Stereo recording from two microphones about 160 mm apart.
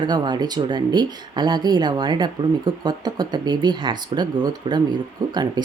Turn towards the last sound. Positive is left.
turn(degrees=-25)  # may be behind; listen again after turning